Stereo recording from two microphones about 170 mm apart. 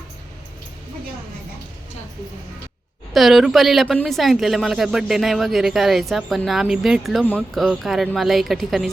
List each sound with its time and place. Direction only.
3.1 s speech: centre (ahead or behind)